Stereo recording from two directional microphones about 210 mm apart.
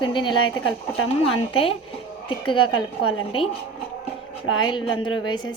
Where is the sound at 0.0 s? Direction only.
20° left (ahead or behind).